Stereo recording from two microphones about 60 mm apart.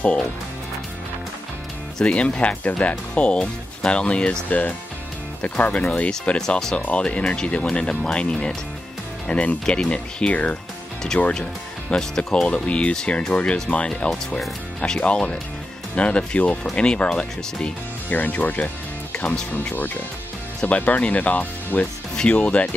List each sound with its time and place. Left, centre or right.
2.0 s speech: centre
11.9 s speech: centre
18.1 s speech: left
19.1 s speech: centre
20.6 s speech: left
22.1 s speech: centre